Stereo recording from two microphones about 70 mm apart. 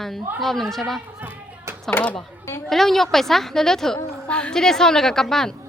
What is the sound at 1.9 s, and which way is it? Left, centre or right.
Speech, left.